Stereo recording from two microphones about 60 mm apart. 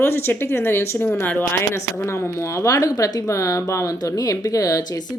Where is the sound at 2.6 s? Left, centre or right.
Left.